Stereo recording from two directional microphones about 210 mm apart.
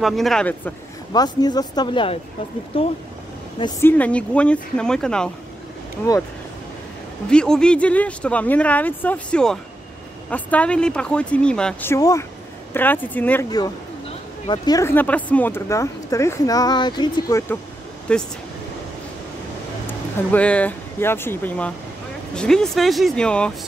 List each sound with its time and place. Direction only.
0.0 s speech: centre (ahead or behind)
1.1 s speech: 20° left (ahead or behind)
3.8 s speech: 5° left (ahead or behind)
7.2 s speech: 5° left (ahead or behind)
20.2 s speech: 5° left (ahead or behind)